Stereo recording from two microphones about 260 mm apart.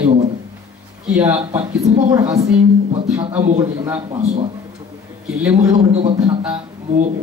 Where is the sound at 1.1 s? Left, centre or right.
Centre; by 4.5 s right.